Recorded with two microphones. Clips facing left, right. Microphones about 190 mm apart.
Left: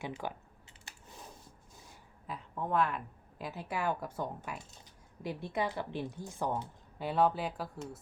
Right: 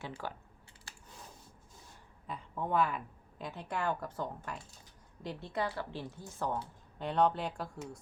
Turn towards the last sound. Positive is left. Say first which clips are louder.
# even
turn(degrees=5)  # may be behind; listen again after turning